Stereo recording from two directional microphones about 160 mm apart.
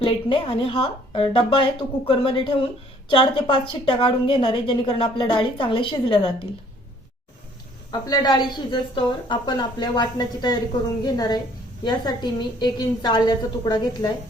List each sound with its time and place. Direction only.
0.0 s a woman's voice: 35° left (ahead or behind)
7.9 s a woman's voice: 25° left (ahead or behind)